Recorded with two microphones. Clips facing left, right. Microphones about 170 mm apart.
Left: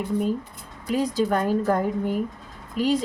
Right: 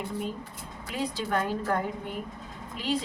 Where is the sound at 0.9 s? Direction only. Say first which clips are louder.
Left 8 dB; 40° left (ahead or behind).